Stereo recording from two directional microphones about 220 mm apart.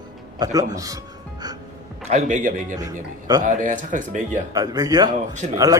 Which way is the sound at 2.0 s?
35° right (ahead or behind).